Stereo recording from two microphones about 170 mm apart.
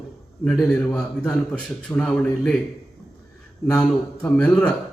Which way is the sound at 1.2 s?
5° left (ahead or behind).